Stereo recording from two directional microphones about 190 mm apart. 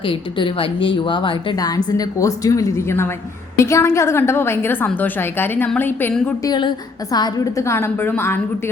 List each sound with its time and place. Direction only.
0.0 s a woman's voice: 25° left (ahead or behind); by 6.5 s 10° left (ahead or behind)
6.5 s a woman's voice: 20° left (ahead or behind)